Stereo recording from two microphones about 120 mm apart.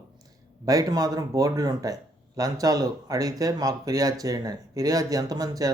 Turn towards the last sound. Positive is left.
turn(degrees=-30)  # may be behind; listen again after turning